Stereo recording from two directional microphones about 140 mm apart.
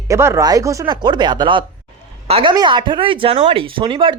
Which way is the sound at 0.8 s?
35° right (ahead or behind).